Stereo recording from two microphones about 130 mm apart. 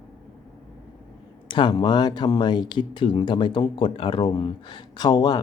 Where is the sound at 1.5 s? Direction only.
35° left (ahead or behind).